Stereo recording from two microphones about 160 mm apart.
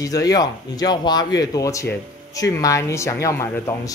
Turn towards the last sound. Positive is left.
turn(degrees=20)  # may be behind; listen again after turning